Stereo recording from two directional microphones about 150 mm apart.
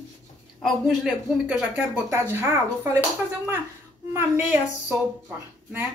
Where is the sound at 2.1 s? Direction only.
15° right (ahead or behind).